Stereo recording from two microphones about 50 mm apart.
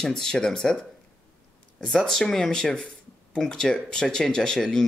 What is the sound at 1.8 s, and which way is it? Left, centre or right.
Speech, centre.